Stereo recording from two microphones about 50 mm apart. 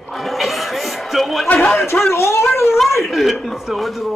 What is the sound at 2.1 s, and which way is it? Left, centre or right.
Speech, left.